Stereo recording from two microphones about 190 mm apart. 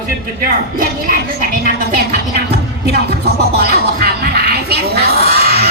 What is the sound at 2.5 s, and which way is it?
Music, 60° right (ahead or behind).